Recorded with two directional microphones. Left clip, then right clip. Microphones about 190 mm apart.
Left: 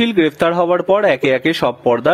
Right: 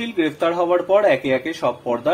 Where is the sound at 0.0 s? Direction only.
50° left (ahead or behind).